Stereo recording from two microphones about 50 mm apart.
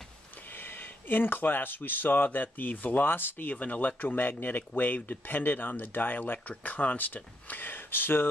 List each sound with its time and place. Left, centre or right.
0.6 s speech: left